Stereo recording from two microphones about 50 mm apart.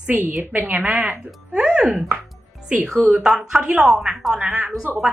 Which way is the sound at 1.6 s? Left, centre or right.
Centre.